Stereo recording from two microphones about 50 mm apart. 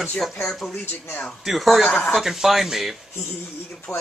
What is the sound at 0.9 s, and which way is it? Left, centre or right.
Speech, left.